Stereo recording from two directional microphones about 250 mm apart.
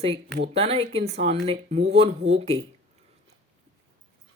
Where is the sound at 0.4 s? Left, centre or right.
Right.